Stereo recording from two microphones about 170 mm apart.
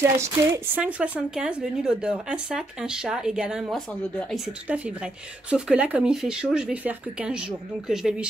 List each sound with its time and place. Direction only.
0.2 s a woman's voice: 10° right (ahead or behind)